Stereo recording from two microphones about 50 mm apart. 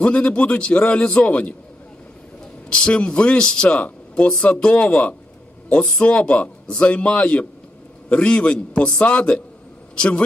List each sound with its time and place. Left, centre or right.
0.0 s speech: left
2.7 s a man's voice: left